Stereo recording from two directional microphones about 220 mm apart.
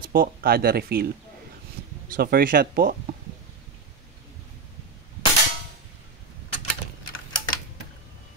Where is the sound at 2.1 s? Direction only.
40° right (ahead or behind).